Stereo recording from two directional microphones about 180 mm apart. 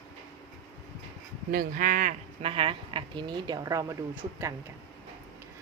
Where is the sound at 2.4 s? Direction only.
30° right (ahead or behind).